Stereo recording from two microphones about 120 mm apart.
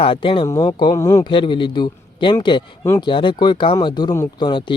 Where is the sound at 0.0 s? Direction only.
50° left (ahead or behind).